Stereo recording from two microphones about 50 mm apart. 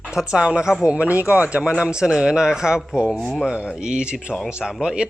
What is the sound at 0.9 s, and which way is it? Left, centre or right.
Speech, right.